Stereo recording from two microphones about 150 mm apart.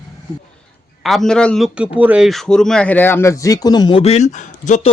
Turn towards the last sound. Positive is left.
turn(degrees=55)  # may be behind; listen again after turning